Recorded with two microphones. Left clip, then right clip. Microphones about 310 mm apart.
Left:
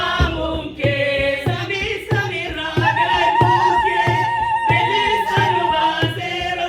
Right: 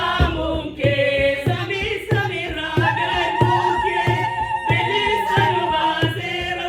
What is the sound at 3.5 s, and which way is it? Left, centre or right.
Music, centre.